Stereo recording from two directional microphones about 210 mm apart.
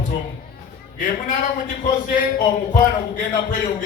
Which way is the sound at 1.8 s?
40° left (ahead or behind).